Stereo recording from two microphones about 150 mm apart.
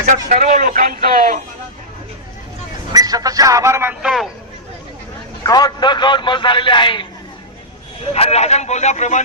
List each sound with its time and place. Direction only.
0.0 s speech: 60° right (ahead or behind)
2.9 s speech: 25° right (ahead or behind)
4.0 s a man's voice: centre (ahead or behind)
5.4 s a man's voice: 25° left (ahead or behind)
8.1 s speech: 45° left (ahead or behind)